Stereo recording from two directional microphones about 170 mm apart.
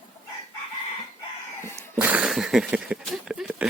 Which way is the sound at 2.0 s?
10° right (ahead or behind).